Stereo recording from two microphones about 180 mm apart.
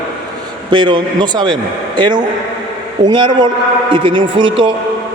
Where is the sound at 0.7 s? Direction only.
25° right (ahead or behind).